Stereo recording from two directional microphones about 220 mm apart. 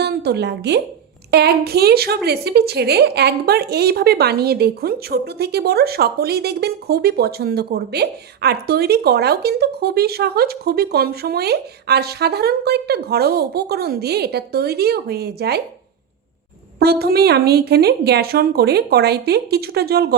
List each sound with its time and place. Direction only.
0.0 s a woman's voice: 50° right (ahead or behind)
16.8 s a woman's voice: 45° right (ahead or behind)